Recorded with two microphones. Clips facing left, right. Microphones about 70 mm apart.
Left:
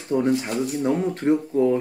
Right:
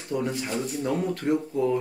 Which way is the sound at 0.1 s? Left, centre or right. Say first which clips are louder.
Left 7 dB; left.